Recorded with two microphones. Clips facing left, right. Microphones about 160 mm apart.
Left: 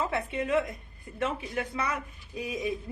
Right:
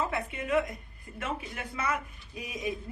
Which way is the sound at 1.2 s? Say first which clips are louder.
Left 5 dB; 30° left (ahead or behind).